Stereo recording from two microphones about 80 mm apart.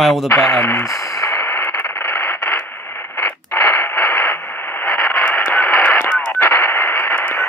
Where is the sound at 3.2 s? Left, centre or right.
Left.